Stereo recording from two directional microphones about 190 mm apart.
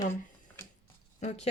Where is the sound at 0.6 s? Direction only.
15° left (ahead or behind).